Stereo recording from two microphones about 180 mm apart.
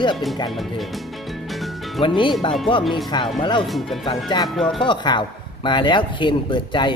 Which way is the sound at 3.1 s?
25° left (ahead or behind).